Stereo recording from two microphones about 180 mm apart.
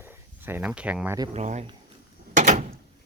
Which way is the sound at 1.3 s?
40° right (ahead or behind).